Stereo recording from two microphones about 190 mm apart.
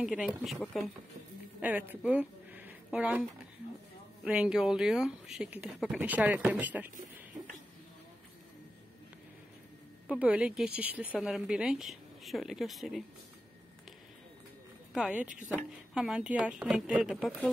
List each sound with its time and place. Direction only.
0.0 s speech: 5° right (ahead or behind)
1.6 s a woman's voice: 10° right (ahead or behind)
10.0 s speech: 5° right (ahead or behind)
15.0 s speech: 5° right (ahead or behind)